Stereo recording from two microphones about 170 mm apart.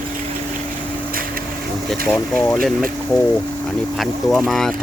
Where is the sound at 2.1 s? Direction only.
5° left (ahead or behind).